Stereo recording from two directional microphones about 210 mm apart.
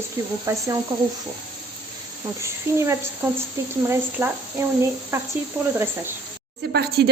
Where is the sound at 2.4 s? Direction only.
15° right (ahead or behind).